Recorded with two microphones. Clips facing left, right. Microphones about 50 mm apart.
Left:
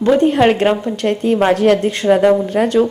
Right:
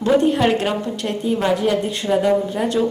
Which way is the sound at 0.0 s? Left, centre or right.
Left.